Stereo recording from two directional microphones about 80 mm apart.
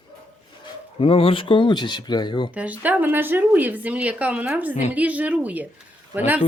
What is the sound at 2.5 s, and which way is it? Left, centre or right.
Speech, centre.